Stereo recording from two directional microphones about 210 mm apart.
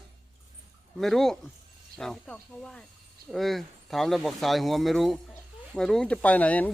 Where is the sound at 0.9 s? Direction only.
Centre (ahead or behind).